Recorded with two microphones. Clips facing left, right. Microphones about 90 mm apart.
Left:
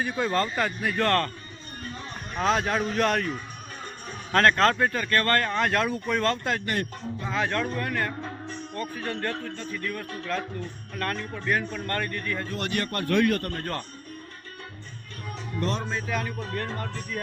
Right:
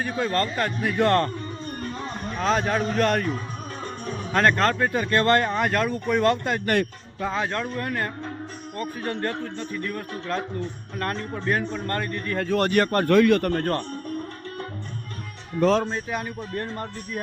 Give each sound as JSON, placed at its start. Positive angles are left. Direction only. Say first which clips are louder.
{"t": 0.0, "sound": "speech", "louder": "right 1 dB", "side_deg": 0}
{"t": 0.9, "sound": "a man's voice", "louder": "right 4 dB", "side_deg": -15}
{"t": 2.4, "sound": "speech", "louder": "right 1 dB", "side_deg": 0}
{"t": 4.3, "sound": "speech", "louder": "even", "side_deg": -5}
{"t": 4.9, "sound": "a man's voice", "louder": "right 4 dB", "side_deg": -20}
{"t": 5.6, "sound": "speech", "louder": "right 2 dB", "side_deg": 0}
{"t": 7.3, "sound": "a man's voice", "louder": "left 2 dB", "side_deg": -20}
{"t": 12.5, "sound": "speech", "louder": "right 11 dB", "side_deg": -50}
{"t": 13.1, "sound": "speech", "louder": "right 4 dB", "side_deg": -90}
{"t": 13.5, "sound": "speech", "louder": "right 8 dB", "side_deg": -45}
{"t": 15.8, "sound": "speech", "louder": "right 3 dB", "side_deg": -35}
{"t": 16.1, "sound": "a man's voice", "louder": "right 1 dB", "side_deg": -20}